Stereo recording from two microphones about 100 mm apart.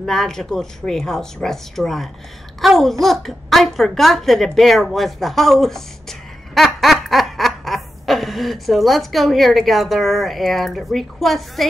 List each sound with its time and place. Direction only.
0.0 s speech: 5° left (ahead or behind)